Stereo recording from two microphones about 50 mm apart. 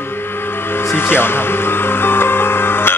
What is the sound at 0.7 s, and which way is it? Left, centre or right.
Music, left.